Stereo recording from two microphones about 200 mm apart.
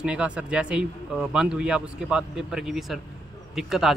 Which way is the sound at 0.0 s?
5° right (ahead or behind).